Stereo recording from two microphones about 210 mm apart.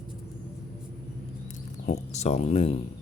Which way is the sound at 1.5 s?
35° left (ahead or behind).